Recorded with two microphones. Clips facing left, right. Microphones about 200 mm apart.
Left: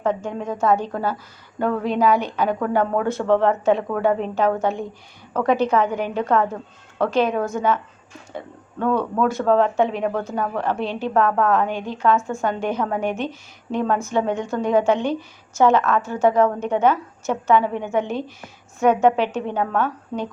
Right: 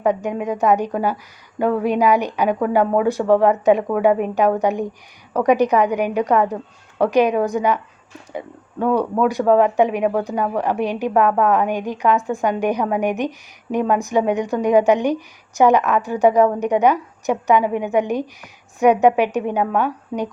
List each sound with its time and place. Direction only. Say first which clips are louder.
0.0 s speech: right 4 dB; 15° right (ahead or behind)